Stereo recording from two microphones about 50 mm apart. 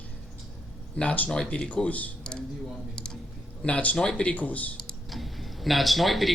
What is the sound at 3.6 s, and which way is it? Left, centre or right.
Speech, left.